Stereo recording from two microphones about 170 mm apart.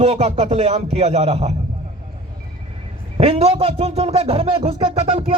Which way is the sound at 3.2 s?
35° right (ahead or behind).